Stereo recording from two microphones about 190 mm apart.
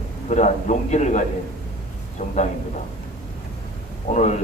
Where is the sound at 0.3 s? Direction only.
40° left (ahead or behind).